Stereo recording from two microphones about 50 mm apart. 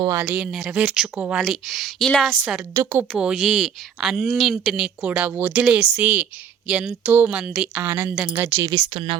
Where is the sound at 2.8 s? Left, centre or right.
Right.